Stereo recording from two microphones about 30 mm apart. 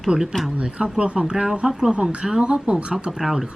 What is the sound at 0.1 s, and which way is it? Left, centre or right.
Speech, right.